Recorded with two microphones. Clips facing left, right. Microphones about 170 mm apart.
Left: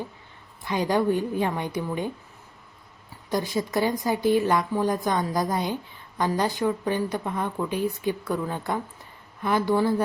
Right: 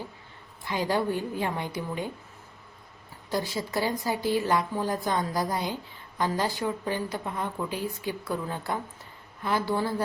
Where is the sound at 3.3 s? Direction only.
20° left (ahead or behind).